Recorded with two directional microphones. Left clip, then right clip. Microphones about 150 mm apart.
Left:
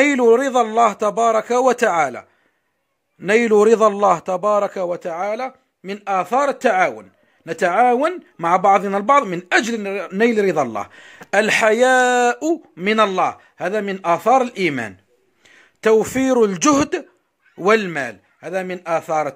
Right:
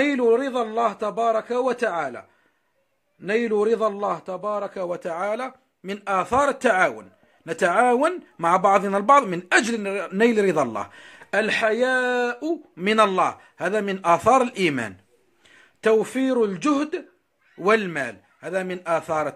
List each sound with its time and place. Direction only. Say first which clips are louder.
0.0 s a man's voice: left 6 dB; 40° left (ahead or behind)
4.8 s speech: left 4 dB; 20° left (ahead or behind); by 12.5 s 40° left (ahead or behind)
12.7 s a man's voice: left 1 dB; 20° left (ahead or behind); by 17.0 s 45° left (ahead or behind)
17.6 s speech: left 4 dB; 25° left (ahead or behind)